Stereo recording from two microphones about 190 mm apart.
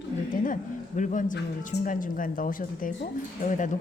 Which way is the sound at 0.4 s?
40° left (ahead or behind).